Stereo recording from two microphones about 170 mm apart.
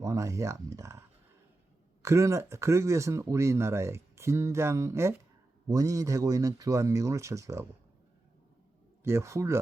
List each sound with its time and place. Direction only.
0.0 s speech: 20° right (ahead or behind)
9.0 s speech: 15° right (ahead or behind)